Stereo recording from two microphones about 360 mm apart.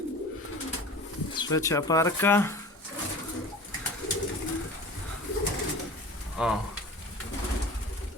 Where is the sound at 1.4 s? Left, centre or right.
Centre.